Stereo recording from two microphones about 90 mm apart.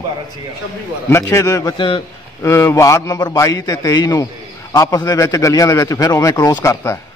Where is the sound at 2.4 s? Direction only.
30° left (ahead or behind).